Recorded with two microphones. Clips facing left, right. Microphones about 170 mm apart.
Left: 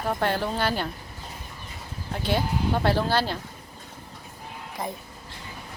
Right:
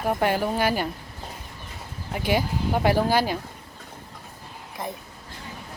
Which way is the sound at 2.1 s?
10° right (ahead or behind).